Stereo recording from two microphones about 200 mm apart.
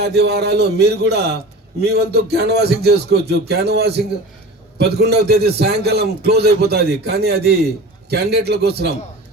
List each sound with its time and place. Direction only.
0.0 s a man's voice: 55° right (ahead or behind)